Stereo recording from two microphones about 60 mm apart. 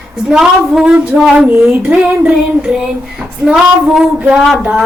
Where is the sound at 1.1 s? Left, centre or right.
Right.